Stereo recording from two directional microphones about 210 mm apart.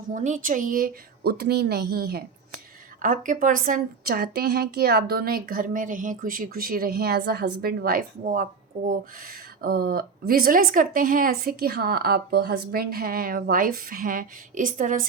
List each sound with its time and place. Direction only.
0.1 s a woman's voice: 35° right (ahead or behind)